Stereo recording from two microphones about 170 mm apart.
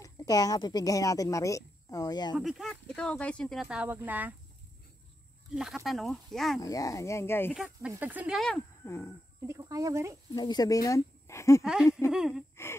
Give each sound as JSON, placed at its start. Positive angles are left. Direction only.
{"t": 0.0, "sound": "speech", "side_deg": 20}
{"t": 2.3, "sound": "speech", "side_deg": 0}
{"t": 5.5, "sound": "speech", "side_deg": 0}
{"t": 6.6, "sound": "speech", "side_deg": 20}
{"t": 7.5, "sound": "speech", "side_deg": -5}
{"t": 8.4, "sound": "speech", "side_deg": 5}
{"t": 8.8, "sound": "a sound", "side_deg": 15}
{"t": 9.5, "sound": "speech", "side_deg": -20}
{"t": 10.3, "sound": "speech", "side_deg": 25}
{"t": 11.6, "sound": "speech", "side_deg": -5}